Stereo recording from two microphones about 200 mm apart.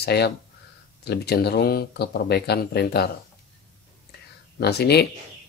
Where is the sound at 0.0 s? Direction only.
55° left (ahead or behind).